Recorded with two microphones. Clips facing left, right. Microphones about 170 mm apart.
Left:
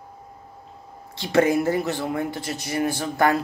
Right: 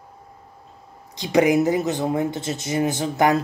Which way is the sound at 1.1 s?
15° right (ahead or behind).